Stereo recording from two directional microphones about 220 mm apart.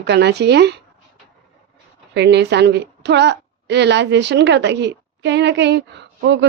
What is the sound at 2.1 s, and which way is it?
Speech, 50° right (ahead or behind).